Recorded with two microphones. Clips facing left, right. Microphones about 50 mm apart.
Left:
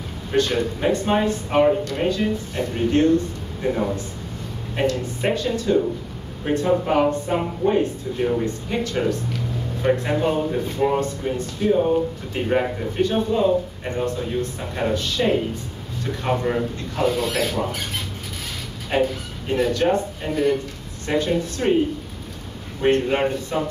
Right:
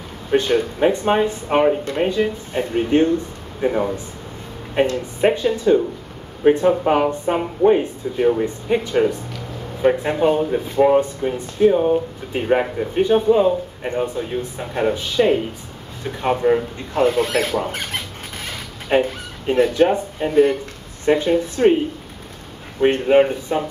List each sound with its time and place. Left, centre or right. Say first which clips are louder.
0.3 s speech: right 3 dB; centre
16.9 s speech: right 5 dB; right
18.9 s speech: right 3 dB; right
22.8 s speech: right 5 dB; centre